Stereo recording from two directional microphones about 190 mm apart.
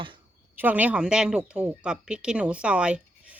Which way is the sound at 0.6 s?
10° right (ahead or behind).